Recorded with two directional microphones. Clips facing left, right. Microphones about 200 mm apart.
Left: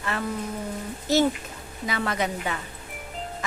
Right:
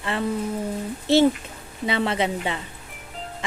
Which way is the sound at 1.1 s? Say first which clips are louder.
Right 4 dB; 30° right (ahead or behind).